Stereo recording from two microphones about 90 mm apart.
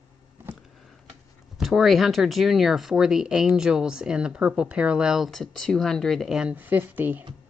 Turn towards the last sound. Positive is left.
turn(degrees=-20)  # may be behind; listen again after turning